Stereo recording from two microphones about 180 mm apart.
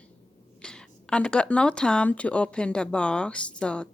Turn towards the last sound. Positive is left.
turn(degrees=5)  # may be behind; listen again after turning